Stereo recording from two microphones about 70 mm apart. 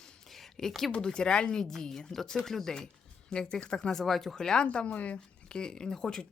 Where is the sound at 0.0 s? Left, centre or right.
Centre.